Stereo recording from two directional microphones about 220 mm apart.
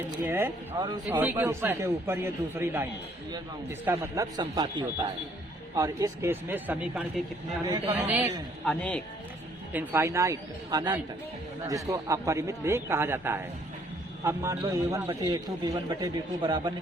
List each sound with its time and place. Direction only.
0.3 s a man's voice: 10° right (ahead or behind)
7.6 s a man's voice: 20° right (ahead or behind)
7.9 s a woman's voice: 5° right (ahead or behind)
9.7 s a man's voice: 10° right (ahead or behind)